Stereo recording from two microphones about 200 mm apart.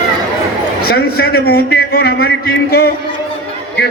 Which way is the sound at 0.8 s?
50° left (ahead or behind).